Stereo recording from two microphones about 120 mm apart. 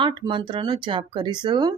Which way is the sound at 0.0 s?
40° right (ahead or behind).